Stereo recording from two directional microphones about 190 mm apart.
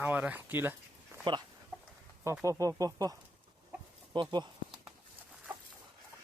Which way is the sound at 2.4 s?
15° right (ahead or behind).